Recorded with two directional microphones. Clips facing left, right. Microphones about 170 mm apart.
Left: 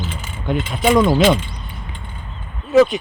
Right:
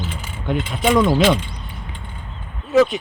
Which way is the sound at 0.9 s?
35° left (ahead or behind).